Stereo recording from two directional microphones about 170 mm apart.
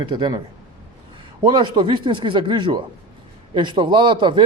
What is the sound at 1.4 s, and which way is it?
Speech, 30° right (ahead or behind).